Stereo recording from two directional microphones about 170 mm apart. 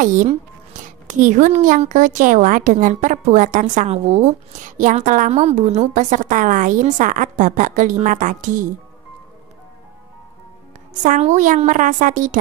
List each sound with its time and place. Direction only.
0.0 s a woman's voice: 50° right (ahead or behind)
10.9 s a woman's voice: 45° right (ahead or behind)